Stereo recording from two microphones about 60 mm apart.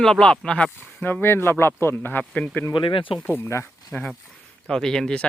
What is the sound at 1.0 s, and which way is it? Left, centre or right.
Speech, left.